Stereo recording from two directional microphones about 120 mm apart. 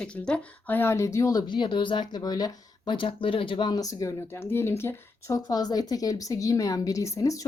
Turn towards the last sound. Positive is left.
turn(degrees=30)  # may be behind; listen again after turning